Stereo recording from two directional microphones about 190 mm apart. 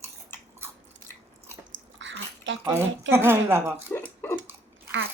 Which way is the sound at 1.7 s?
75° right (ahead or behind).